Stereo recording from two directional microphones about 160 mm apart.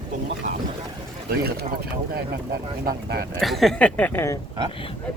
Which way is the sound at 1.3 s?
70° right (ahead or behind).